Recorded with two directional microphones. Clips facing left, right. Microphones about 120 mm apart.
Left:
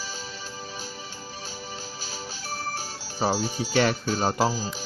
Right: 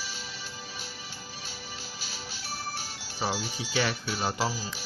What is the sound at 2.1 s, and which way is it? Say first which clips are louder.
Music: left 4 dB; 45° left (ahead or behind).